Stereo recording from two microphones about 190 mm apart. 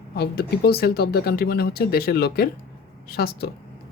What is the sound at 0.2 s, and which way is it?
Speech, 55° left (ahead or behind).